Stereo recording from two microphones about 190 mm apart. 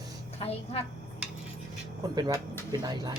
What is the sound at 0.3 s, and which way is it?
Speech, 30° left (ahead or behind).